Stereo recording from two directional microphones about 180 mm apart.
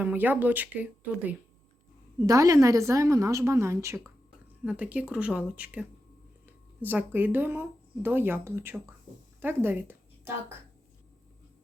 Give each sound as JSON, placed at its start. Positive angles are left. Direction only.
{"t": 0.0, "sound": "a woman's voice", "side_deg": -10}
{"t": 2.1, "sound": "a woman's voice", "side_deg": -20}